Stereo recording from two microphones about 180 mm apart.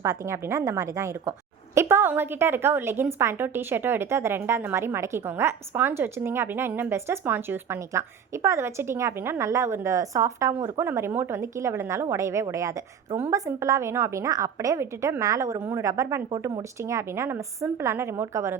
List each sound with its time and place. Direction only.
0.0 s a woman's voice: 15° right (ahead or behind)